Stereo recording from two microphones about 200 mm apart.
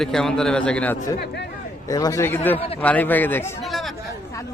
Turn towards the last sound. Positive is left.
turn(degrees=0)  # may be behind; listen again after turning